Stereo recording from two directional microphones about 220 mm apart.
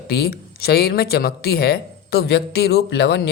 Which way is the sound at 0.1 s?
45° left (ahead or behind).